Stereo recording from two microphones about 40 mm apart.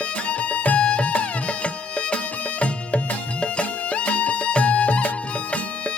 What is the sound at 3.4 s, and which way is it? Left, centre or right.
Music, left.